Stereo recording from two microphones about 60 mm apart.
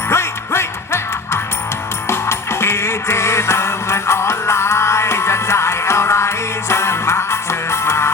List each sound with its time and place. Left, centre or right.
0.1 s music: left